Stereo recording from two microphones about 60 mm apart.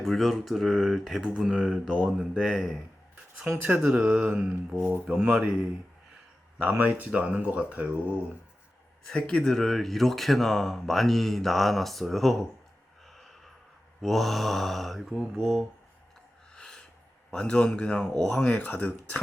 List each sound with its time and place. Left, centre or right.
0.0 s speech: centre
3.6 s speech: right
6.6 s speech: right
9.0 s speech: centre
13.1 s snort: centre
14.0 s speech: centre
16.6 s a sound: centre
17.3 s speech: centre